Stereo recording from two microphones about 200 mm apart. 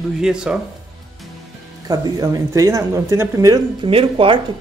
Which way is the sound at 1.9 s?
20° right (ahead or behind).